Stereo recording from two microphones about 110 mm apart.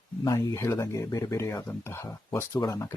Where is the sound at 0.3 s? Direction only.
30° left (ahead or behind).